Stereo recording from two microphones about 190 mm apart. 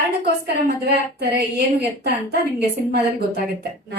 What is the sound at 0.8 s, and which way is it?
Speech, 60° right (ahead or behind).